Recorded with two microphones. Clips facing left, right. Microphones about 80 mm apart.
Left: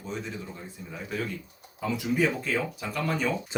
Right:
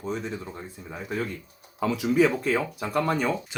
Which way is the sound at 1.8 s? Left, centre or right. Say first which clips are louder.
Right 5 dB; right.